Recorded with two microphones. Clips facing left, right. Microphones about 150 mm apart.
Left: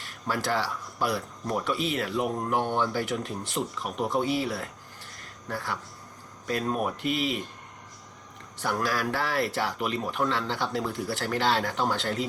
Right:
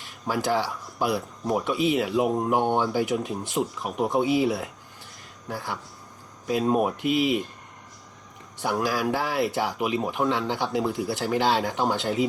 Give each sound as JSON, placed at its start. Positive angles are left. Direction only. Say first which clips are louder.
{"t": 0.0, "sound": "speech", "louder": "right 3 dB", "side_deg": 0}
{"t": 5.1, "sound": "a sound", "louder": "right 1 dB", "side_deg": 0}
{"t": 6.5, "sound": "speech", "louder": "right 6 dB", "side_deg": -5}
{"t": 8.6, "sound": "speech", "louder": "right 3 dB", "side_deg": 0}